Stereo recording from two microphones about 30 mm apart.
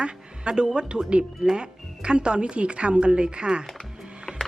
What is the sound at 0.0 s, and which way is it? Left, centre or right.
A woman's voice, right.